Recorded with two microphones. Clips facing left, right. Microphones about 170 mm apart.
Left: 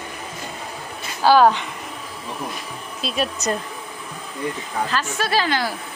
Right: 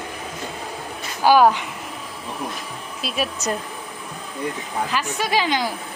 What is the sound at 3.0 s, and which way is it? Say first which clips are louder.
Speech: left 1 dB; 5° right (ahead or behind).